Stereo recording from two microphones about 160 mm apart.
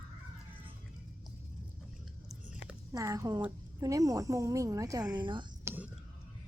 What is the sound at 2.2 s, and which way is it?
Chewing, 5° right (ahead or behind).